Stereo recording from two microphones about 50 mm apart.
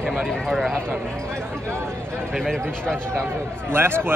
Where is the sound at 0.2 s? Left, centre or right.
Centre.